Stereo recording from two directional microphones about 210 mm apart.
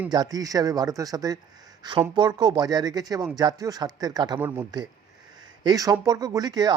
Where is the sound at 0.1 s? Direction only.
20° right (ahead or behind).